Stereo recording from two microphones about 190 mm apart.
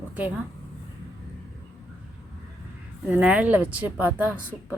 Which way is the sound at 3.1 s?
10° right (ahead or behind).